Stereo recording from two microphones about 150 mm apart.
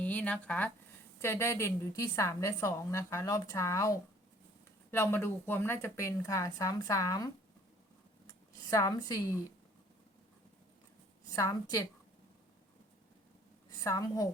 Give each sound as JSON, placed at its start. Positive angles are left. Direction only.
{"t": 0.0, "sound": "a woman's voice", "side_deg": 10}
{"t": 8.7, "sound": "a woman's voice", "side_deg": 25}
{"t": 11.3, "sound": "a woman's voice", "side_deg": 20}
{"t": 13.8, "sound": "a woman's voice", "side_deg": 20}